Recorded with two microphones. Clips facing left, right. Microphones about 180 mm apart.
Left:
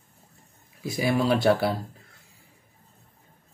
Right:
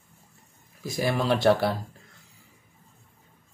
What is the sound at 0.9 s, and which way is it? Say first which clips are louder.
Speech: left 2 dB; 5° left (ahead or behind).